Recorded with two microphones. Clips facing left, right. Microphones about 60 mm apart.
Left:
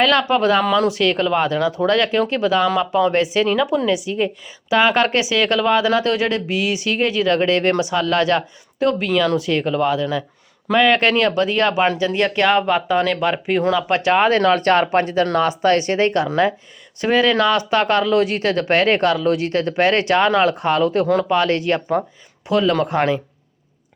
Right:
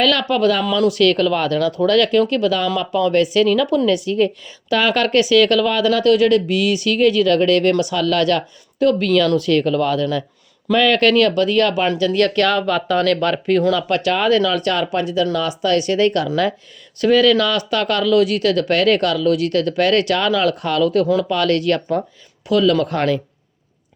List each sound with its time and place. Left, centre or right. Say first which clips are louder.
0.0 s a woman's voice: even; left